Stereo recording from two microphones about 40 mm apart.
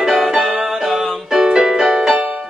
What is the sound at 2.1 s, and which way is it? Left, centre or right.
Music, right.